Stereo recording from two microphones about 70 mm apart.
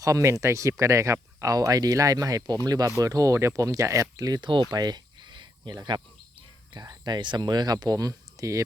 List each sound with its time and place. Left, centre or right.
0.0 s speech: right
2.9 s speech: right
4.7 s cricket: right
6.7 s speech: right